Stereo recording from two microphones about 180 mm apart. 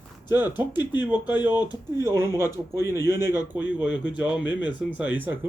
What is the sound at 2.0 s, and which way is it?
Speech, 15° right (ahead or behind).